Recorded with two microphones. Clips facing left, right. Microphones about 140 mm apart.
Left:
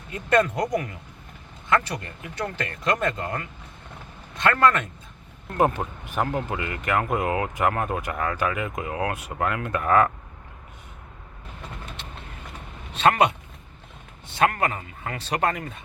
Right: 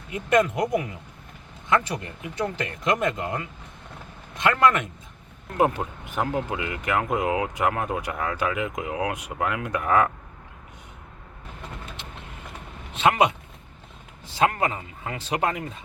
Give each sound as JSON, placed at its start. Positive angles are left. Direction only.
{"t": 0.1, "sound": "speech", "side_deg": -15}
{"t": 13.0, "sound": "speech", "side_deg": -15}
{"t": 14.3, "sound": "speech", "side_deg": -20}